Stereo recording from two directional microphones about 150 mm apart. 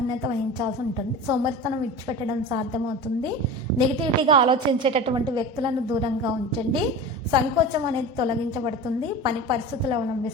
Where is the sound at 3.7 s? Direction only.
35° right (ahead or behind).